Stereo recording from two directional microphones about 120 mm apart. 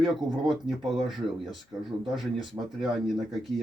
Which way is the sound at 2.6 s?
30° right (ahead or behind).